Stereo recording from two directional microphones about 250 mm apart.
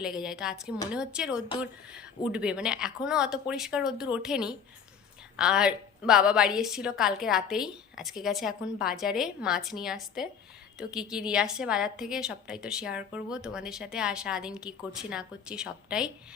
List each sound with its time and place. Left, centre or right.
0.0 s a woman's voice: centre